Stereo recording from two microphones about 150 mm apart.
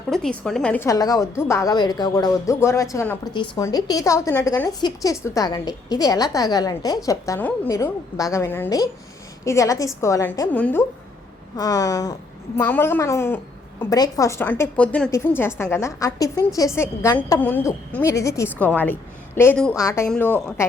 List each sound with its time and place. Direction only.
0.1 s a woman's voice: 5° left (ahead or behind)
0.9 s speech: 25° left (ahead or behind)
3.3 s a woman's voice: 35° left (ahead or behind)
7.3 s a woman's voice: 10° left (ahead or behind)
7.7 s a woman's voice: 20° left (ahead or behind)
11.5 s a woman's voice: 25° left (ahead or behind)